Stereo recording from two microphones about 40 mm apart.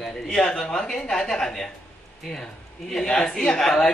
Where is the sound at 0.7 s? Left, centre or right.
Centre.